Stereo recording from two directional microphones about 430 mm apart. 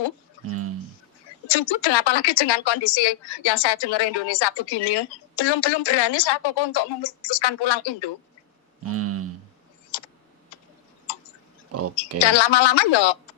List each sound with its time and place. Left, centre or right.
0.4 s speech: right
1.5 s speech: left
8.8 s a sound: right
11.7 s speech: right
12.2 s speech: left